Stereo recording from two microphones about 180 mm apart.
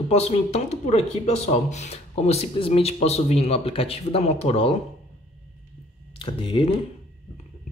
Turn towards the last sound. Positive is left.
turn(degrees=30)  # may be behind; listen again after turning